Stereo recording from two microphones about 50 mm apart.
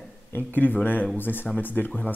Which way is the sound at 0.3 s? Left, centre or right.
Left.